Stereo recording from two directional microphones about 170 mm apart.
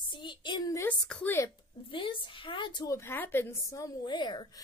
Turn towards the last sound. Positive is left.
turn(degrees=25)  # may be behind; listen again after turning